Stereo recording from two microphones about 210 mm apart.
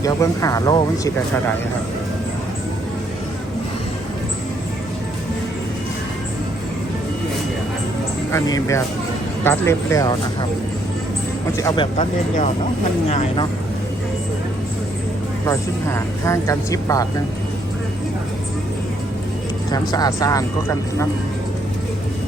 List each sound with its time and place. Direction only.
0.0 s speech: 15° left (ahead or behind)
8.3 s speech: 15° left (ahead or behind)
11.5 s speech: 15° left (ahead or behind)
11.9 s speech: 35° left (ahead or behind)
15.4 s speech: 15° left (ahead or behind)
19.7 s speech: 20° left (ahead or behind)